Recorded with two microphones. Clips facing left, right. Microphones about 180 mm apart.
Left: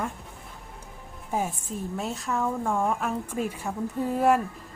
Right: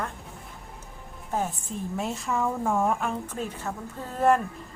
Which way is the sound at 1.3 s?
10° left (ahead or behind).